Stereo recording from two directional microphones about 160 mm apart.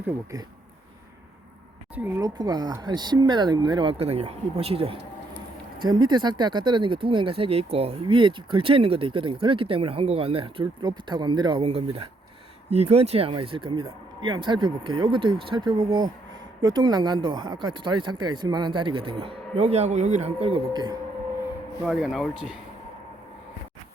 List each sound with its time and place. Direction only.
2.0 s speech: 10° right (ahead or behind)
2.2 s speech: 25° right (ahead or behind)
21.8 s speech: 5° right (ahead or behind)